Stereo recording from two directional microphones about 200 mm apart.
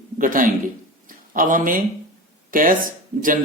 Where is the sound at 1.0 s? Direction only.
45° right (ahead or behind).